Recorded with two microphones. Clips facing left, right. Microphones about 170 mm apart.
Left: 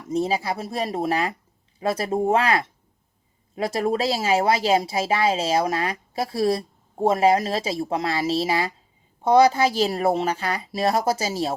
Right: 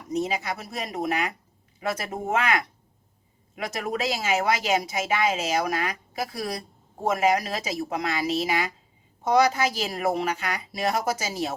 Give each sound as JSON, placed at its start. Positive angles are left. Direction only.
{"t": 0.1, "sound": "a woman's voice", "side_deg": 30}